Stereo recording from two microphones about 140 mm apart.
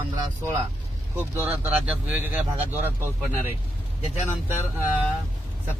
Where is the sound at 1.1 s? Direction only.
15° right (ahead or behind).